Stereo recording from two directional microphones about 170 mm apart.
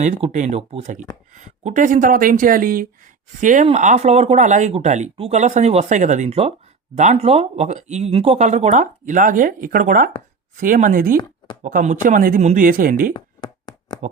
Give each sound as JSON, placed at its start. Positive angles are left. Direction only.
{"t": 0.0, "sound": "speech", "side_deg": -45}
{"t": 13.1, "sound": "tap", "side_deg": 25}